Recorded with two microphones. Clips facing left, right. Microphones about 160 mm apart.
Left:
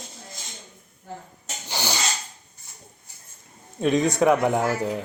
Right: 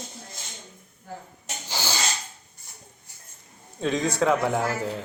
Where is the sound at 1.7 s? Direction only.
20° left (ahead or behind).